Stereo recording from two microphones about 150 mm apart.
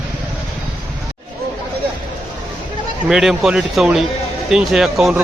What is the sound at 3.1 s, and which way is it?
Speech, 5° right (ahead or behind).